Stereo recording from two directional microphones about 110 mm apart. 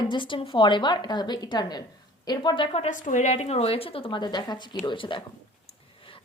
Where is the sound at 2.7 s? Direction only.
90° left; by 5.2 s 45° left (ahead or behind).